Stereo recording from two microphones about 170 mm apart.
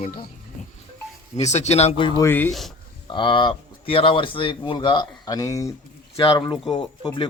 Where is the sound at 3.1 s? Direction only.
30° left (ahead or behind).